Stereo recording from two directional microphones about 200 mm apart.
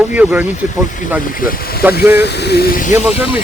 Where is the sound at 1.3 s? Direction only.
45° left (ahead or behind).